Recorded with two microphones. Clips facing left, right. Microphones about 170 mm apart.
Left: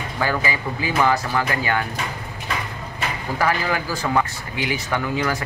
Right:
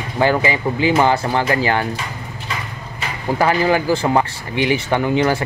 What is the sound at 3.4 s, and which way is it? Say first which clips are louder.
Speech: right 6 dB; 30° right (ahead or behind).